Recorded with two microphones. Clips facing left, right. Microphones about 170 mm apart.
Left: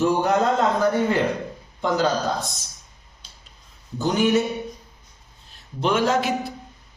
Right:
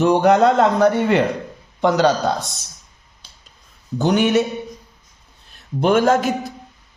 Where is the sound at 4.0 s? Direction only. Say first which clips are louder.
Right 3 dB; 70° right (ahead or behind).